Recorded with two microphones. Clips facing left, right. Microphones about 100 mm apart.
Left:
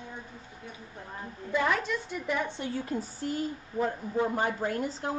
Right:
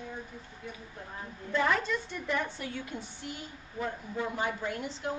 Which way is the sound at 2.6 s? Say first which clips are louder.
Left 6 dB; 35° left (ahead or behind).